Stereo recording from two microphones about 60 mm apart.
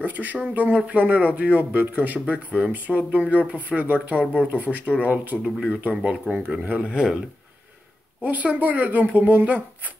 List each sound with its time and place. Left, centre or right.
0.0 s speech: right
4.2 s speech: left
4.5 s speech: right
6.9 s speech: centre
8.2 s speech: right